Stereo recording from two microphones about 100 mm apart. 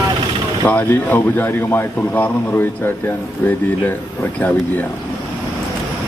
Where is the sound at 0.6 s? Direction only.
15° left (ahead or behind).